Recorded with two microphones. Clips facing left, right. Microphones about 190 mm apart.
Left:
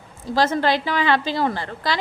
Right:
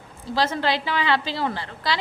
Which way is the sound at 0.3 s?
45° left (ahead or behind).